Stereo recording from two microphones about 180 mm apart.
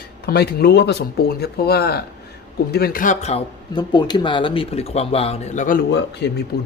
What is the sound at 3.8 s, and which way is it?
Speech, 25° left (ahead or behind).